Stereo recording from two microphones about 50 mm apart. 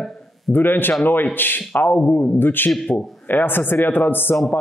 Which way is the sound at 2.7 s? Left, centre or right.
Centre.